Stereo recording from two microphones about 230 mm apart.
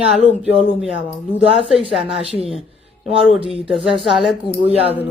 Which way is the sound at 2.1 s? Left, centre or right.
Centre.